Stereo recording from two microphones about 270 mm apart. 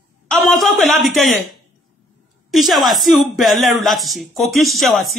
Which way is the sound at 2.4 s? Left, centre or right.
Centre.